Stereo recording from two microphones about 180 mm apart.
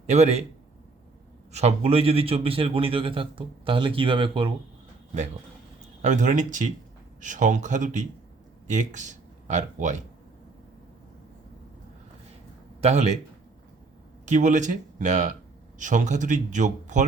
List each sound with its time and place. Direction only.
0.1 s a man's voice: 40° right (ahead or behind)
1.5 s a man's voice: 35° right (ahead or behind)
6.0 s speech: 40° right (ahead or behind)
12.8 s a man's voice: 40° right (ahead or behind)
14.3 s speech: 45° right (ahead or behind)